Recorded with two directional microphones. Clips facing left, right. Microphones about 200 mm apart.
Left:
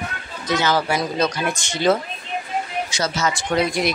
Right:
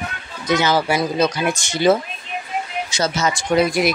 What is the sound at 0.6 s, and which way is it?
Speech, 10° right (ahead or behind).